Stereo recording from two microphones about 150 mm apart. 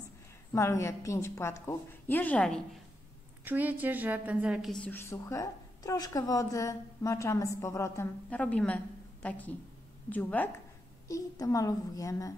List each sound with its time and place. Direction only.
0.5 s a woman's voice: 20° left (ahead or behind)
3.4 s a woman's voice: 10° right (ahead or behind); by 12.4 s 20° left (ahead or behind)